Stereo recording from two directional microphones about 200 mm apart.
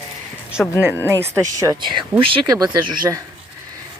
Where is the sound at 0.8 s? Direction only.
10° right (ahead or behind).